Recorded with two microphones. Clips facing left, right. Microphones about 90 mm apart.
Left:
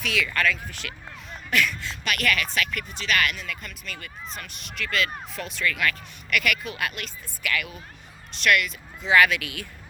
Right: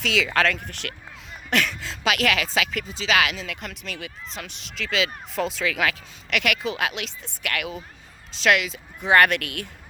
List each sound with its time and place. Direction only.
0.0 s speech: 90° right; by 0.9 s 65° right (ahead or behind)
1.5 s speech: 80° right; by 7.8 s 65° right (ahead or behind)
8.4 s speech: 90° right; by 9.6 s 60° right (ahead or behind)